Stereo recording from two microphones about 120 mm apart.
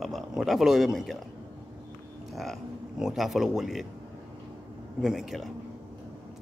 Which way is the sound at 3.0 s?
Centre (ahead or behind).